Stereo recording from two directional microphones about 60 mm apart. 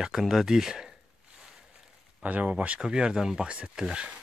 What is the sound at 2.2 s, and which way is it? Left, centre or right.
Speech, right.